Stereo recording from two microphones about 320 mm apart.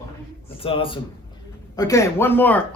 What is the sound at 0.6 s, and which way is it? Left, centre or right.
A man's voice, centre.